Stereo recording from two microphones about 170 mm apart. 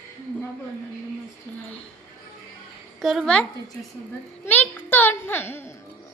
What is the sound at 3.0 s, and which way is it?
Speech, centre (ahead or behind).